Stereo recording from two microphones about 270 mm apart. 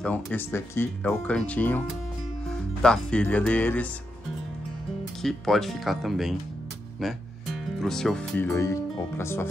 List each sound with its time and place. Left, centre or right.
0.0 s speech: centre
5.2 s speech: centre
7.8 s speech: centre